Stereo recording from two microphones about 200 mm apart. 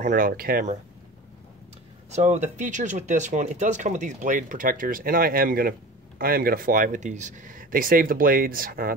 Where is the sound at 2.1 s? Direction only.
35° right (ahead or behind).